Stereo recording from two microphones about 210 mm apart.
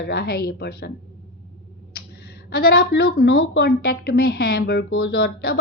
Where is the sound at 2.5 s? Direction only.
45° left (ahead or behind).